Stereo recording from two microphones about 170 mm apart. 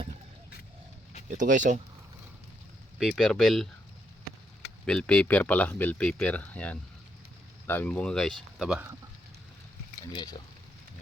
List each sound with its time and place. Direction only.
1.3 s speech: 50° right (ahead or behind)
3.0 s speech: centre (ahead or behind)
4.9 s speech: 5° left (ahead or behind)